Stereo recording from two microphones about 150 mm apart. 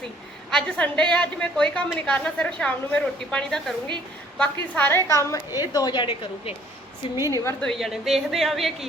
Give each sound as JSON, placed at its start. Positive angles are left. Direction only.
{"t": 0.5, "sound": "a woman's voice", "side_deg": 5}
{"t": 7.3, "sound": "a woman's voice", "side_deg": 20}
{"t": 7.6, "sound": "a woman's voice", "side_deg": 0}